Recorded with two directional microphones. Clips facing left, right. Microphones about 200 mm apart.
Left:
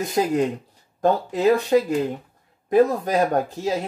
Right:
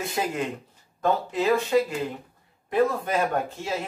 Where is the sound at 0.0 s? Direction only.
35° left (ahead or behind).